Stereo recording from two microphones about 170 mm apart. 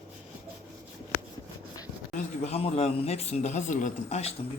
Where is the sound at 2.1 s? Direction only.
40° left (ahead or behind).